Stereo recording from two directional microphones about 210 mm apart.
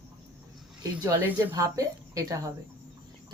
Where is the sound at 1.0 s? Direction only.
10° right (ahead or behind).